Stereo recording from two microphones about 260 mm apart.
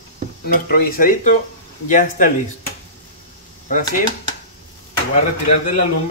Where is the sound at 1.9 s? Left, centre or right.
Left.